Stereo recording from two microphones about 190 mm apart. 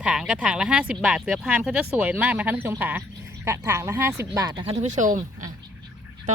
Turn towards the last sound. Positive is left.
turn(degrees=-40)  # may be behind; listen again after turning